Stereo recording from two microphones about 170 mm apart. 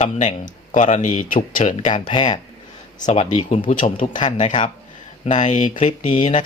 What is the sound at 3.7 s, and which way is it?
Speech, 45° left (ahead or behind).